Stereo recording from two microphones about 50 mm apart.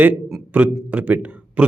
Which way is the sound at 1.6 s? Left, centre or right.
Right.